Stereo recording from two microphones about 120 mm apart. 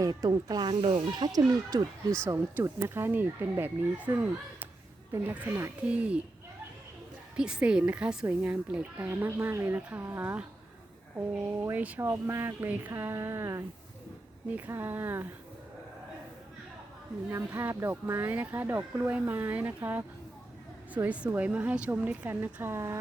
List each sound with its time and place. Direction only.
0.0 s speech: 35° right (ahead or behind); by 4.1 s 15° right (ahead or behind)
5.1 s speech: 15° right (ahead or behind)
7.3 s speech: 5° right (ahead or behind)
11.6 s speech: 15° right (ahead or behind)
17.3 s speech: 20° right (ahead or behind)